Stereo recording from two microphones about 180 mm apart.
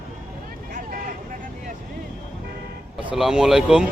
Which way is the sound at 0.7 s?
50° right (ahead or behind).